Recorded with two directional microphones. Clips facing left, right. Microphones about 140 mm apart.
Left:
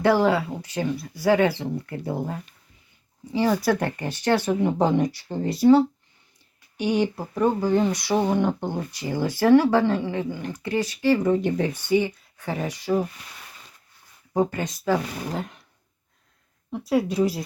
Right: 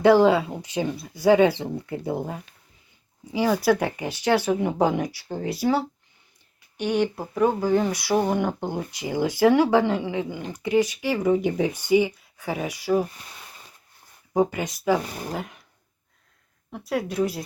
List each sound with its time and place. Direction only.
0.0 s speech: 15° right (ahead or behind)
14.3 s speech: 10° right (ahead or behind)
16.7 s speech: centre (ahead or behind)